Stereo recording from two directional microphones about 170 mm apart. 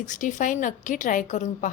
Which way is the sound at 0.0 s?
50° left (ahead or behind).